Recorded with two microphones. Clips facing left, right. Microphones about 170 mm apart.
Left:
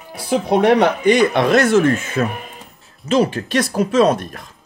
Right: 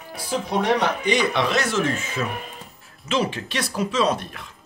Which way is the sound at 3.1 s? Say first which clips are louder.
Left 8 dB; 45° left (ahead or behind).